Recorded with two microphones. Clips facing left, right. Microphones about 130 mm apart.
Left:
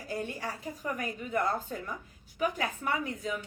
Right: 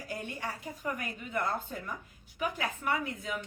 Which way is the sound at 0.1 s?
35° left (ahead or behind).